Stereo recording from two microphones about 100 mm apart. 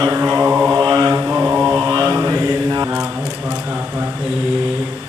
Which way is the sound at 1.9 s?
35° right (ahead or behind).